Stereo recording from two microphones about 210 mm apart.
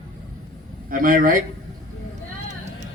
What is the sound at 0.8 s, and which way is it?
Speech, 40° right (ahead or behind).